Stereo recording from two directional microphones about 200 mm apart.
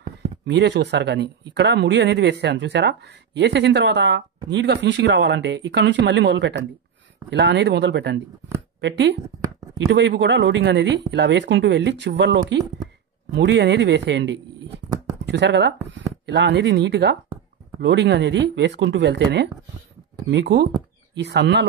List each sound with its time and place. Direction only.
0.5 s speech: 60° right (ahead or behind)